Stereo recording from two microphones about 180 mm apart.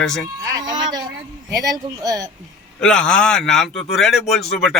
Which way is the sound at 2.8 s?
5° left (ahead or behind).